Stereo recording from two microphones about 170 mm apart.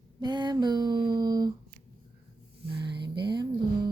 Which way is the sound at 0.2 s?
25° right (ahead or behind).